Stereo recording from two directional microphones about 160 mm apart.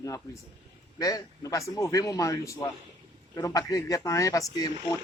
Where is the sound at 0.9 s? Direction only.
20° left (ahead or behind).